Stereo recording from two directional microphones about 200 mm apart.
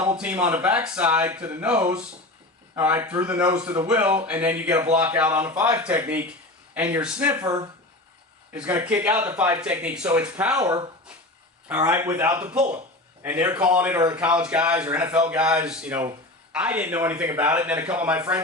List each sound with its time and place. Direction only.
0.0 s speech: 10° right (ahead or behind)
7.4 s speech: 20° right (ahead or behind)
10.6 s speech: 15° right (ahead or behind)